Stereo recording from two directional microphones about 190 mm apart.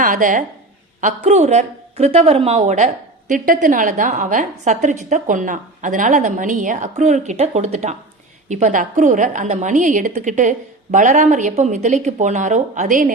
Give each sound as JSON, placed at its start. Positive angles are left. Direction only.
{"t": 0.0, "sound": "a woman's voice", "side_deg": -45}